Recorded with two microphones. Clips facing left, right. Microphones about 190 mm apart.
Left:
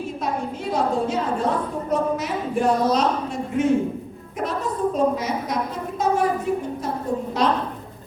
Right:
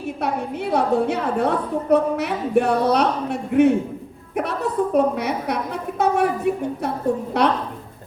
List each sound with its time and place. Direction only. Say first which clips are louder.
0.2 s a woman's voice: right 3 dB; 65° right (ahead or behind)